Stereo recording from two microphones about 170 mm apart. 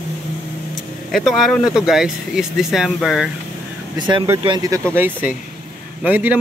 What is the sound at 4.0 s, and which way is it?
Speech, 25° right (ahead or behind).